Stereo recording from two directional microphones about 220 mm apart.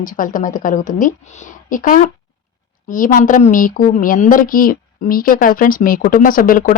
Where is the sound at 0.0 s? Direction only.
35° left (ahead or behind).